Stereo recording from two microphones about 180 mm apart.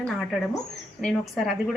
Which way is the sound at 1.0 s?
Centre (ahead or behind).